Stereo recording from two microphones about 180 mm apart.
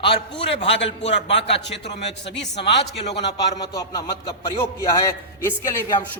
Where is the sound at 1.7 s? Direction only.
75° left (ahead or behind).